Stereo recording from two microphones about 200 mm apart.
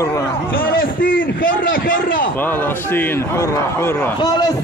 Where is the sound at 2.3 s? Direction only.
10° left (ahead or behind).